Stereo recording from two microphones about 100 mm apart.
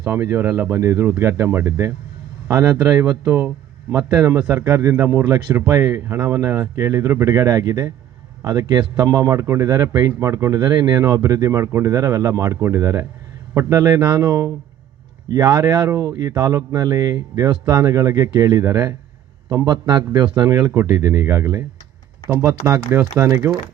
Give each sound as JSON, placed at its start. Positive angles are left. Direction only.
{"t": 0.1, "sound": "a man's voice", "side_deg": -25}
{"t": 15.6, "sound": "a man's voice", "side_deg": -35}